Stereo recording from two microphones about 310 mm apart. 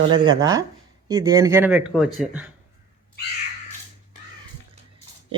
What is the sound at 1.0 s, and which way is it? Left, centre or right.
Speech, centre.